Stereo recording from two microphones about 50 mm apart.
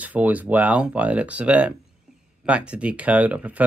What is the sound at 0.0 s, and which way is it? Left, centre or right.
Speech, right.